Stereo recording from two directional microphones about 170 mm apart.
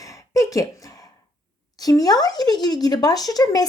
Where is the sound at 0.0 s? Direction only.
20° left (ahead or behind).